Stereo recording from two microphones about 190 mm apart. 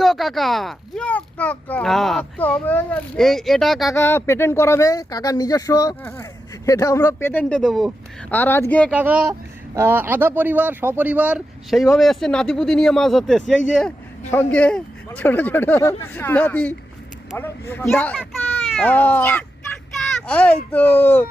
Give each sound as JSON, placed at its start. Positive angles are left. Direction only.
{"t": 0.0, "sound": "speech", "side_deg": 0}
{"t": 3.9, "sound": "speech", "side_deg": 15}
{"t": 7.6, "sound": "speech", "side_deg": 0}
{"t": 9.0, "sound": "speech", "side_deg": -5}
{"t": 20.0, "sound": "a sound", "side_deg": 10}
{"t": 20.7, "sound": "speech", "side_deg": 10}